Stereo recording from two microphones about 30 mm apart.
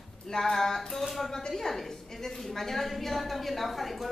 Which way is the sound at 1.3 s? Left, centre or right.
Centre.